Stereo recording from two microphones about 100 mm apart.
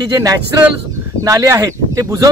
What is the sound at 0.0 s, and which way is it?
Speech, 35° right (ahead or behind).